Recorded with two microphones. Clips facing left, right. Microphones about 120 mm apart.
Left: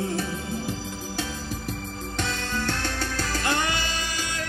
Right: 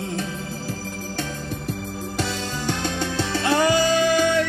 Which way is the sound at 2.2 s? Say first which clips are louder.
Right 1 dB; 15° right (ahead or behind).